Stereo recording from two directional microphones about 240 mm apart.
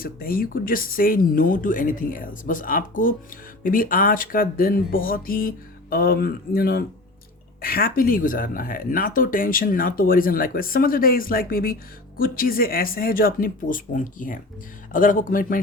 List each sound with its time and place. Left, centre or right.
0.0 s speech: left